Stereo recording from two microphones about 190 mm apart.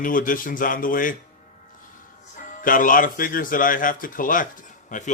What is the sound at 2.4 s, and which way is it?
Speech, 45° left (ahead or behind).